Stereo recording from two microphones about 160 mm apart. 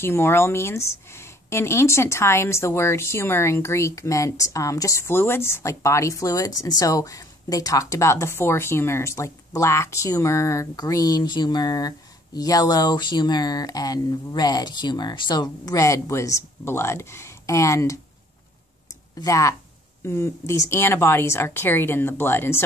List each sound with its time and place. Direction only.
0.0 s speech: 15° left (ahead or behind)
19.1 s speech: 20° left (ahead or behind)